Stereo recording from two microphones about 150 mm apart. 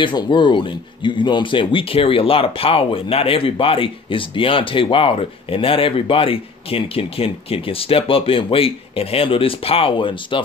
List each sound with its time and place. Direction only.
0.0 s speech: 30° left (ahead or behind)